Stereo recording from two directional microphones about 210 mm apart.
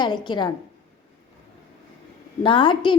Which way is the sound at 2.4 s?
25° left (ahead or behind).